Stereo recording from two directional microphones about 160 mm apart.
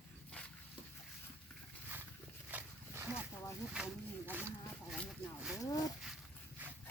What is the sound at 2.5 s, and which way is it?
Wild animals, 10° right (ahead or behind).